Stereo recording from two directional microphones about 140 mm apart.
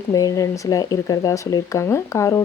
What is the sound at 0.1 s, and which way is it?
Speech, 25° left (ahead or behind).